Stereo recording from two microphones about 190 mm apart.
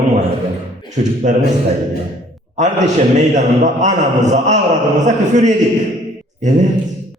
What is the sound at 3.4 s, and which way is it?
A man's voice, 40° right (ahead or behind).